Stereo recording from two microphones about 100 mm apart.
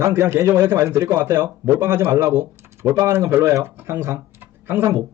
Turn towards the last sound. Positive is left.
turn(degrees=-25)  # may be behind; listen again after turning